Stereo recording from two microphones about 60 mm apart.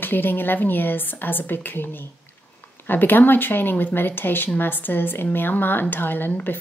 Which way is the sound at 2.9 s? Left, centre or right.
Left.